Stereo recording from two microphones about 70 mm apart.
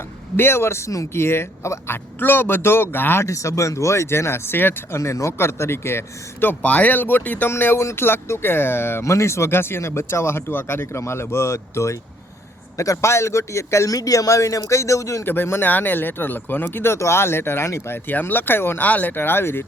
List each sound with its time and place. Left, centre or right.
0.3 s speech: left
3.2 s a man's voice: left
4.9 s speech: left
7.5 s a man's voice: left
15.2 s speech: left